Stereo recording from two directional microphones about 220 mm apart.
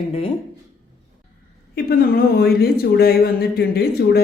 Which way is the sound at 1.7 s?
45° left (ahead or behind).